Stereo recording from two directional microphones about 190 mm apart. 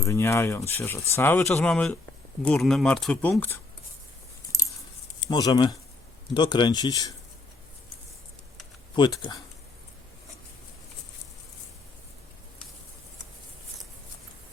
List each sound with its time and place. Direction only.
0.0 s speech: 15° left (ahead or behind)
5.3 s speech: 20° left (ahead or behind)
9.0 s speech: 25° left (ahead or behind)